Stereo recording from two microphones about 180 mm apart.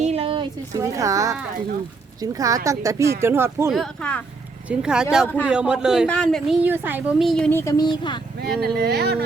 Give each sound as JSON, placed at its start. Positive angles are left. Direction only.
{"t": 0.0, "sound": "a sound", "side_deg": -35}
{"t": 0.8, "sound": "speech", "side_deg": -20}
{"t": 3.7, "sound": "a man's voice", "side_deg": 5}
{"t": 6.6, "sound": "speech", "side_deg": -10}
{"t": 7.3, "sound": "a man's voice", "side_deg": 5}
{"t": 7.6, "sound": "a woman's voice", "side_deg": 20}
{"t": 8.4, "sound": "speech", "side_deg": -60}